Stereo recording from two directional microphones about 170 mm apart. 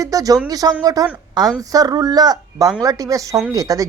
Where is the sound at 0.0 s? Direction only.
20° right (ahead or behind).